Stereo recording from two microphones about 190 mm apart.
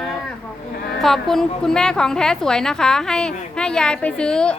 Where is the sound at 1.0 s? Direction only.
Centre (ahead or behind).